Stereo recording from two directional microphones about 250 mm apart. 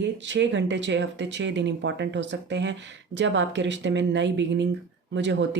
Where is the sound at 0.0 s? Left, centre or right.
Right.